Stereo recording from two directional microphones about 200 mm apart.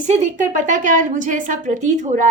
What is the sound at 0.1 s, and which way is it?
A woman's voice, 35° right (ahead or behind).